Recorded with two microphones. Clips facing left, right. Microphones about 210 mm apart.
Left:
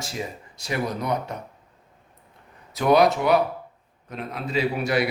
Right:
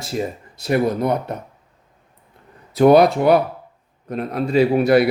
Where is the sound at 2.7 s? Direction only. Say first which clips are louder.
Right 6 dB; 55° right (ahead or behind).